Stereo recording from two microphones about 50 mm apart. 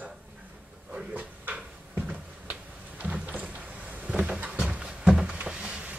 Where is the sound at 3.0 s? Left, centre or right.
Right.